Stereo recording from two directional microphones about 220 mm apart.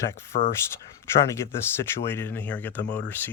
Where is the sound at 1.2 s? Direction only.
10° left (ahead or behind).